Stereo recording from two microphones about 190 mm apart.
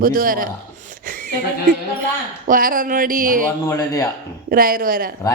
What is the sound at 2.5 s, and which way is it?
Speech, 45° right (ahead or behind).